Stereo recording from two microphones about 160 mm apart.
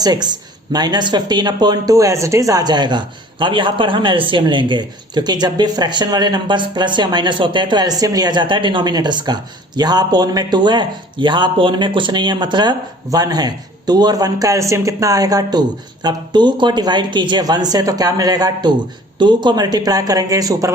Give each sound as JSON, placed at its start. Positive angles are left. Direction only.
{"t": 0.0, "sound": "speech", "side_deg": -25}